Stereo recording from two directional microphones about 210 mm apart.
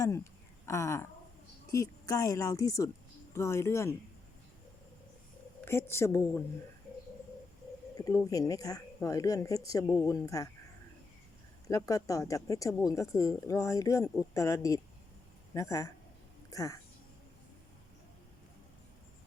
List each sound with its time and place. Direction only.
0.6 s speech: 15° left (ahead or behind)
5.6 s speech: 10° left (ahead or behind)
7.9 s speech: 15° left (ahead or behind)
11.7 s speech: 15° left (ahead or behind)